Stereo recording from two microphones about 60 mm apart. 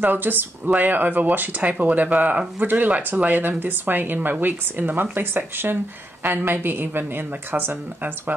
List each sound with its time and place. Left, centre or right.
0.0 s speech: right